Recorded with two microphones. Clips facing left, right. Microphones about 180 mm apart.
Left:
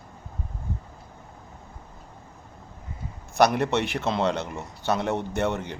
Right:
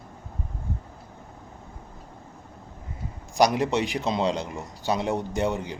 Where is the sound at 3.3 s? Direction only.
60° left (ahead or behind).